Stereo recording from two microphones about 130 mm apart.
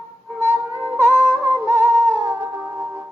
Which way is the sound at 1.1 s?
20° left (ahead or behind).